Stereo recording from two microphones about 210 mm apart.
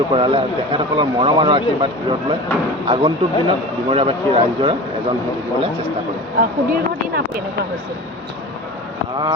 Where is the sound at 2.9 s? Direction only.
20° right (ahead or behind).